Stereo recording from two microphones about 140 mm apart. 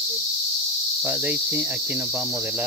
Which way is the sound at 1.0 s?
15° right (ahead or behind).